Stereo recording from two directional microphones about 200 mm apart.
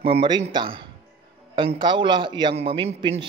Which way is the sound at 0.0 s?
25° right (ahead or behind).